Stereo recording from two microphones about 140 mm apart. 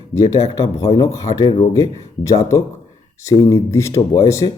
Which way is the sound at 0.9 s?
25° left (ahead or behind).